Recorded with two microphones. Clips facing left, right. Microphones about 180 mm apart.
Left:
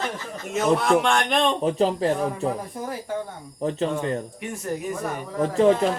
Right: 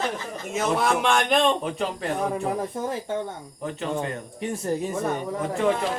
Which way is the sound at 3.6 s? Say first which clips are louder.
Left 4 dB; 35° left (ahead or behind).